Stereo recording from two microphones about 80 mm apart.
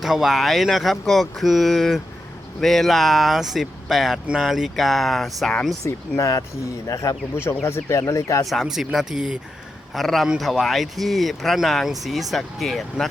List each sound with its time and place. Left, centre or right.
0.0 s speech: centre
5.8 s speech: left
7.4 s speech: left
8.4 s speech: centre